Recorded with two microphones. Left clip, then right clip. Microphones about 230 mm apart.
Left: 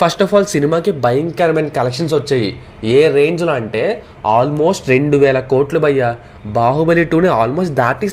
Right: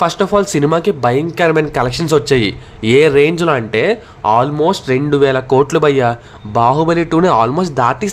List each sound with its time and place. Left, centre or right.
0.0 s speech: centre